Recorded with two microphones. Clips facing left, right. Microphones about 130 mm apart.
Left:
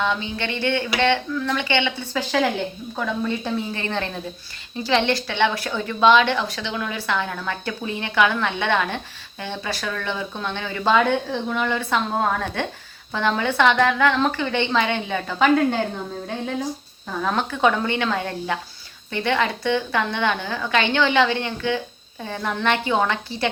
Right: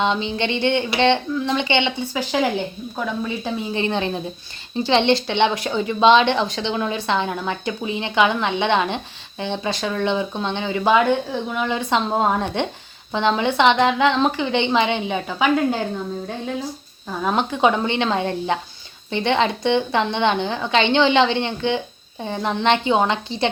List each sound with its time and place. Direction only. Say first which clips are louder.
0.0 s a woman's voice: right 3 dB; 25° right (ahead or behind); by 3.8 s 5° right (ahead or behind)
3.8 s a woman's voice: right 5 dB; 20° right (ahead or behind)
11.7 s a woman's voice: right 2 dB; 20° right (ahead or behind)
17.2 s a woman's voice: right 2 dB; 20° right (ahead or behind)